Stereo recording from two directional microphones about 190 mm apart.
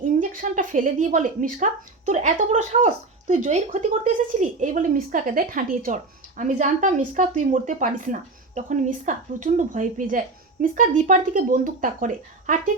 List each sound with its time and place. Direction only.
0.0 s speech: 45° right (ahead or behind)